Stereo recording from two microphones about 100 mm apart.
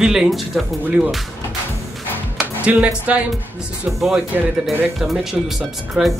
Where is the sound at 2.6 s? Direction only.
10° right (ahead or behind).